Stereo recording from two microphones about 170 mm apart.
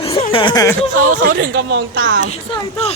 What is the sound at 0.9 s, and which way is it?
Speech, 50° right (ahead or behind).